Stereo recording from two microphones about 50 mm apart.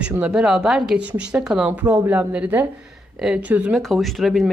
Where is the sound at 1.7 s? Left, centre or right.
Right.